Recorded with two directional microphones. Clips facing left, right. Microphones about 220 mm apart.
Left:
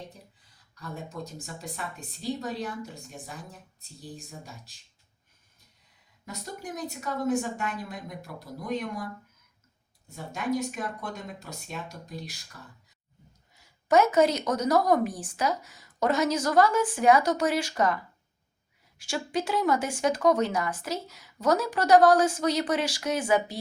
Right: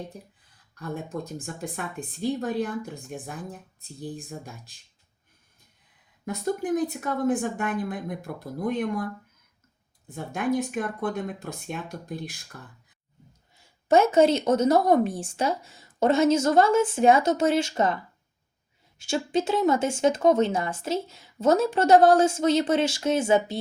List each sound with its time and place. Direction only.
0.8 s a woman's voice: 55° right (ahead or behind)
4.0 s speech: 55° right (ahead or behind)
6.2 s a woman's voice: 55° right (ahead or behind)
10.1 s a woman's voice: 55° right (ahead or behind)
13.6 s speech: 30° right (ahead or behind)